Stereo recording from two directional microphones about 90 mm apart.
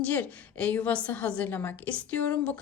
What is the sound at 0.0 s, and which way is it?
A woman's voice, 15° left (ahead or behind).